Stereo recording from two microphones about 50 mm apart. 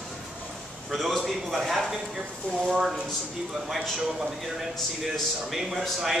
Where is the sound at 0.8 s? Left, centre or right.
Centre.